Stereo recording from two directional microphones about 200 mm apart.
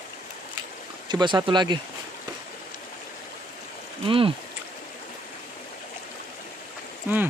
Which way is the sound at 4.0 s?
25° right (ahead or behind).